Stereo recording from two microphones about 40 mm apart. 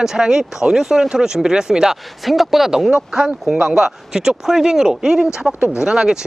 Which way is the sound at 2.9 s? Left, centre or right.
Centre.